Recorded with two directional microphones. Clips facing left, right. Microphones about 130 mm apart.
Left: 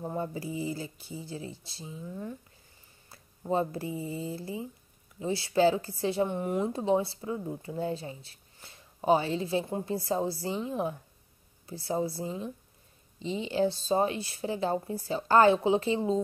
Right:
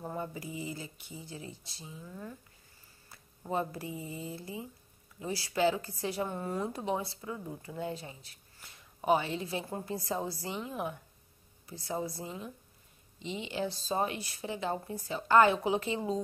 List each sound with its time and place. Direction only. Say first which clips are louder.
0.2 s a woman's voice: left 5 dB; 30° left (ahead or behind)
3.1 s a woman's voice: left 6 dB; 30° left (ahead or behind)